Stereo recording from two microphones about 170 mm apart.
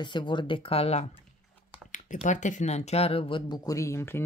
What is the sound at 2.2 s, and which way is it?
Speech, 45° left (ahead or behind).